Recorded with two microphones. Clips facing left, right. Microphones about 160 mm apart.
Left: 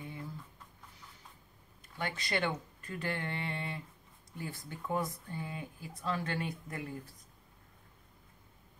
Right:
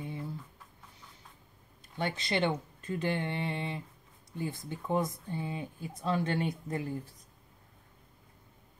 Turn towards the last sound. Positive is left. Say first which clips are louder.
# right 6 dB
turn(degrees=-30)  # may be behind; listen again after turning